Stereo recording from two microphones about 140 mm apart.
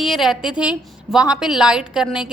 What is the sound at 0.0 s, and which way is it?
A woman's voice, centre (ahead or behind).